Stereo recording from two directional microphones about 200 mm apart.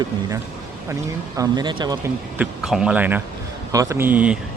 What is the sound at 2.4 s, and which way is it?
Speech, 5° right (ahead or behind).